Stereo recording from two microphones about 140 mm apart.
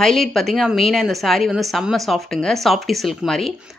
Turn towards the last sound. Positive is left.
turn(degrees=0)  # may be behind; listen again after turning